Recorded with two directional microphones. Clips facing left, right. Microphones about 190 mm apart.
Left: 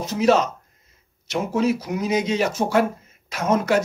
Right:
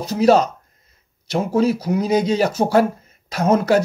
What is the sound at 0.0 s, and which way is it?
Speech, 35° right (ahead or behind).